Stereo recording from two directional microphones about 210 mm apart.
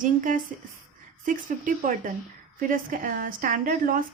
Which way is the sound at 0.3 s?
40° right (ahead or behind).